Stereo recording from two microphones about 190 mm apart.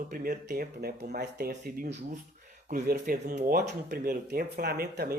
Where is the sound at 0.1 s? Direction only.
50° right (ahead or behind).